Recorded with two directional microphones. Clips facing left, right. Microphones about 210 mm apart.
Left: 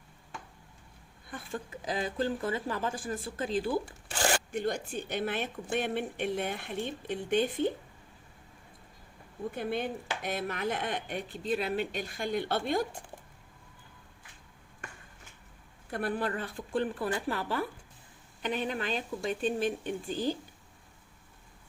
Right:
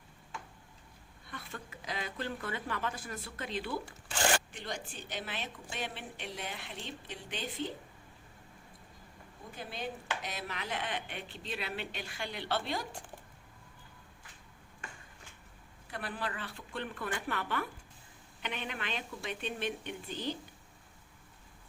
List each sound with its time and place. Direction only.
1.5 s speech: 30° left (ahead or behind)
4.5 s speech: 55° left (ahead or behind)
9.6 s speech: 55° left (ahead or behind)
15.9 s speech: 50° left (ahead or behind)